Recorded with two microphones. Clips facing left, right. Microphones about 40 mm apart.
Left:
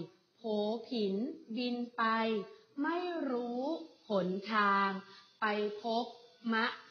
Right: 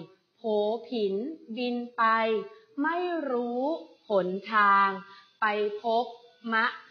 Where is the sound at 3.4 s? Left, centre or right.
Right.